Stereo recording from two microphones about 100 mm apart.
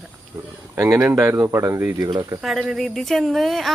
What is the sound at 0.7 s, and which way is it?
Speech, 30° right (ahead or behind).